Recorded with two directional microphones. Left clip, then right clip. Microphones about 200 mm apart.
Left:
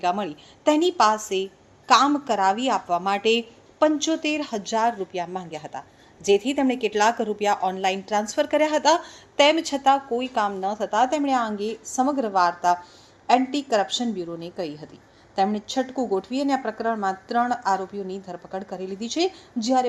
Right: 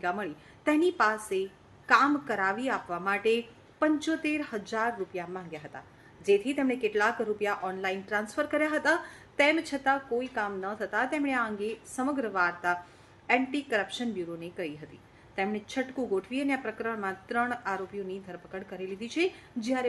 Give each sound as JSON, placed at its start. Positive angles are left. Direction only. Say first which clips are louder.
{"t": 0.0, "sound": "a woman's voice", "louder": "left 8 dB", "side_deg": 20}